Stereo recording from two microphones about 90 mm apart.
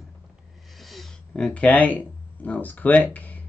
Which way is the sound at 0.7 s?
Centre (ahead or behind).